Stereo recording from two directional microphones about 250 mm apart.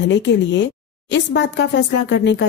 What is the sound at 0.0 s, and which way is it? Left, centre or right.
Speech, left.